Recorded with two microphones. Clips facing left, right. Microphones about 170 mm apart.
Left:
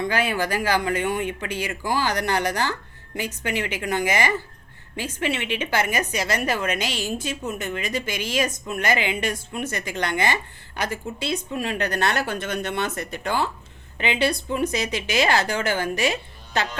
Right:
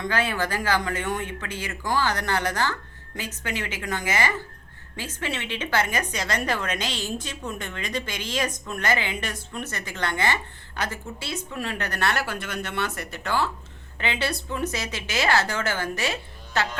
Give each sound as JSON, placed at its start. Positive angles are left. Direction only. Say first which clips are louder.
{"t": 0.0, "sound": "a woman's voice", "louder": "left 2 dB", "side_deg": 10}